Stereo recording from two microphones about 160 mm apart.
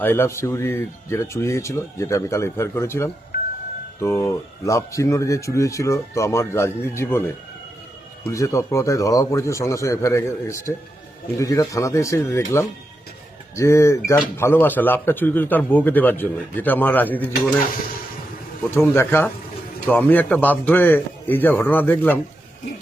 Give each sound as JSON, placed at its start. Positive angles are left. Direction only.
{"t": 0.0, "sound": "speech", "side_deg": 15}
{"t": 18.7, "sound": "speech", "side_deg": 15}